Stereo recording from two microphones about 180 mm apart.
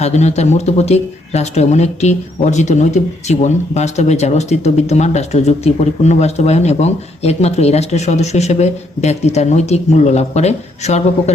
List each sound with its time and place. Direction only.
0.0 s speech: 40° left (ahead or behind)